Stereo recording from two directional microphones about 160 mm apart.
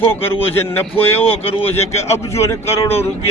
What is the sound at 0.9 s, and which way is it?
Speech, 35° left (ahead or behind).